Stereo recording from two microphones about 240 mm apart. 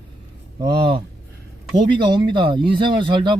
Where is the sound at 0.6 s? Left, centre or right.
Centre.